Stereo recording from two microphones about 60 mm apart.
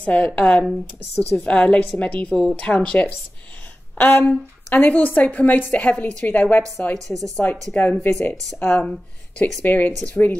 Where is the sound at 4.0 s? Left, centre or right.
Left.